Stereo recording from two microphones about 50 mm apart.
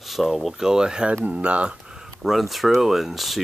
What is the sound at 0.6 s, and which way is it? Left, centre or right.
Speech, centre.